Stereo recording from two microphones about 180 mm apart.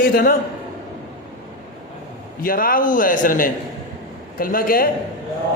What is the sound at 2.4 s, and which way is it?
Speech, 55° left (ahead or behind).